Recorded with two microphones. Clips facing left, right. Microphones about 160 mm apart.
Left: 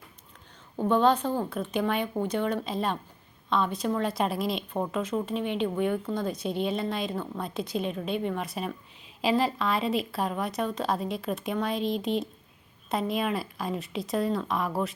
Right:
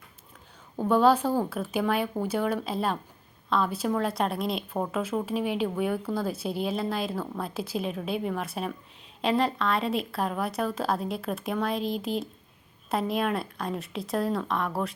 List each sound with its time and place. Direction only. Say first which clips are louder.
0.9 s speech: right 2 dB; 5° right (ahead or behind)